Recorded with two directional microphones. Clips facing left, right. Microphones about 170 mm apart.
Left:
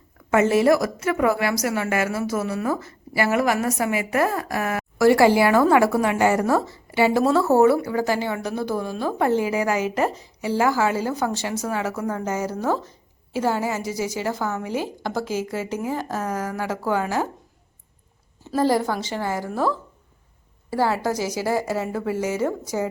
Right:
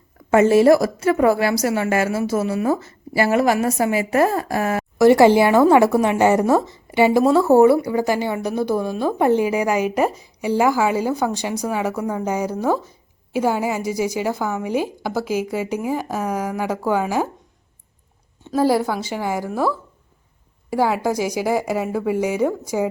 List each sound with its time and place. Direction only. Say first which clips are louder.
0.3 s a woman's voice: right 5 dB; 30° right (ahead or behind); by 17.2 s 15° right (ahead or behind)
18.5 s a woman's voice: right 2 dB; 10° right (ahead or behind)